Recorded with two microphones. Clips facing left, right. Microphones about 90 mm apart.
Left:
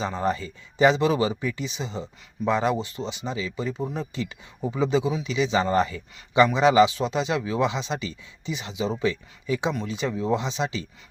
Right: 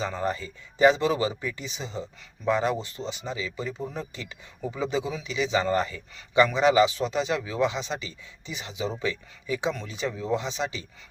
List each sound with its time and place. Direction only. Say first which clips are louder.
0.0 s speech: left 3 dB; 20° left (ahead or behind)